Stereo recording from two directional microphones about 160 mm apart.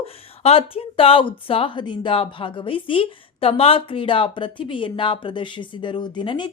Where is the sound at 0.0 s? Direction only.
40° left (ahead or behind).